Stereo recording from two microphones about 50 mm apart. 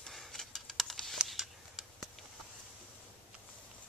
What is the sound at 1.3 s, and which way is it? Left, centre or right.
Scissors, centre.